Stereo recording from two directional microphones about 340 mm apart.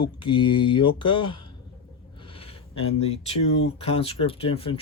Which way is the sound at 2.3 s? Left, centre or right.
Centre.